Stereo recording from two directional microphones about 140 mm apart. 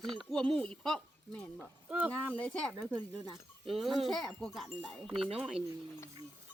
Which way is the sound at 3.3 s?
Centre (ahead or behind).